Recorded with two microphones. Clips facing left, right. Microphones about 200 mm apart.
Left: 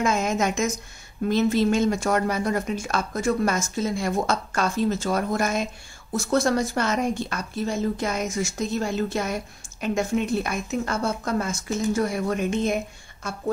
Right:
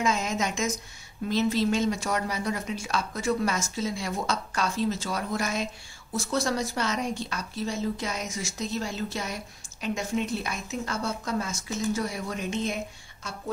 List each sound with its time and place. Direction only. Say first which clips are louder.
0.0 s speech: left 4 dB; 50° left (ahead or behind)